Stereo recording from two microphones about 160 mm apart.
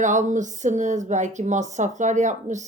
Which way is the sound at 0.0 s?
50° right (ahead or behind).